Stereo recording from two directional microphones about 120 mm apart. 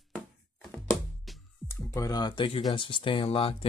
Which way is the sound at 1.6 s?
25° left (ahead or behind).